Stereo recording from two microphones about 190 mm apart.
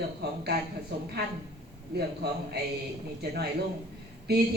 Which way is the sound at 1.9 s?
60° right (ahead or behind).